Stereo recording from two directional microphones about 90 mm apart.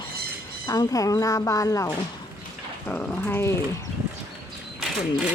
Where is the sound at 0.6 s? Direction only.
40° left (ahead or behind).